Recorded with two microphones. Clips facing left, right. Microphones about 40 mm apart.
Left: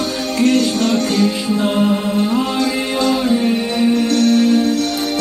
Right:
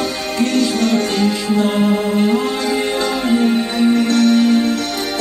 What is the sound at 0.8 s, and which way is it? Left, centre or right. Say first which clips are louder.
Music: left 1 dB; right.